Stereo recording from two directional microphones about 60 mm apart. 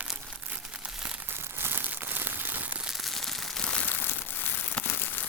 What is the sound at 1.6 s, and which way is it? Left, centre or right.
Crumpling, right.